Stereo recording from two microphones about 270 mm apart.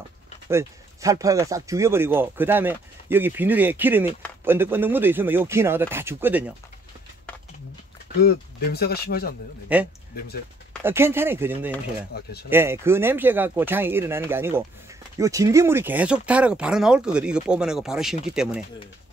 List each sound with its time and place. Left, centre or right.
0.5 s speech: centre
8.2 s speech: left
9.7 s speech: centre
10.1 s speech: left
10.8 s speech: centre
12.1 s speech: left
12.4 s speech: centre